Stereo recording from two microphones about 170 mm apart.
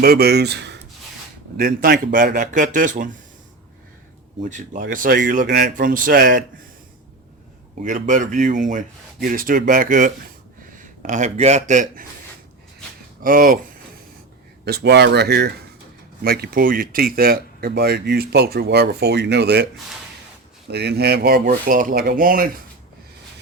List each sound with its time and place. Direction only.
0.0 s speech: 65° right (ahead or behind); by 0.8 s 85° right
1.5 s speech: 60° right (ahead or behind)
4.4 s speech: 45° right (ahead or behind)
7.8 s speech: 50° right (ahead or behind)
13.2 s speech: 55° right (ahead or behind)
14.6 s speech: 75° right (ahead or behind)
16.2 s speech: 60° right (ahead or behind); by 19.6 s 80° right
20.7 s speech: 75° right (ahead or behind); by 22.6 s 60° right (ahead or behind)